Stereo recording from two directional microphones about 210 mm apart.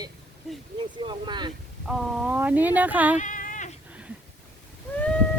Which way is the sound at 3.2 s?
40° left (ahead or behind).